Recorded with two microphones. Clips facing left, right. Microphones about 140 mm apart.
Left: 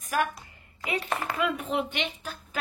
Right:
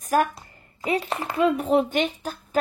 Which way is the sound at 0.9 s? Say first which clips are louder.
Right 5 dB; 30° right (ahead or behind).